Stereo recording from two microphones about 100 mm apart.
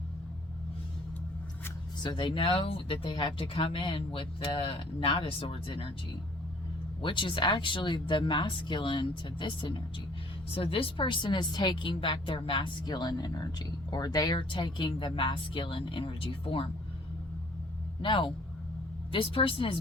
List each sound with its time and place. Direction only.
2.0 s a woman's voice: 50° left (ahead or behind)
7.0 s speech: 55° left (ahead or behind)
10.5 s a woman's voice: 70° left (ahead or behind)
18.0 s a woman's voice: 55° left (ahead or behind)